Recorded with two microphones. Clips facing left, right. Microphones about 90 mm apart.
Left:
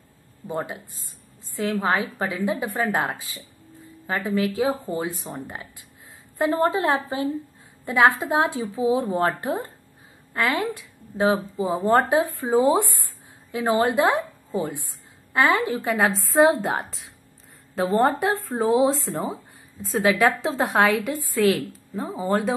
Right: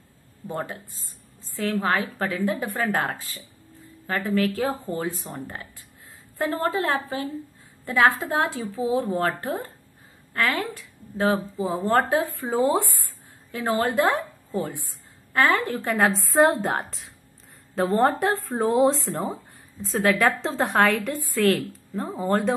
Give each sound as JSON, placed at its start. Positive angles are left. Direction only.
{"t": 0.5, "sound": "speech", "side_deg": 15}
{"t": 4.1, "sound": "a woman's voice", "side_deg": 15}
{"t": 15.3, "sound": "speech", "side_deg": 15}
{"t": 15.8, "sound": "a woman's voice", "side_deg": 0}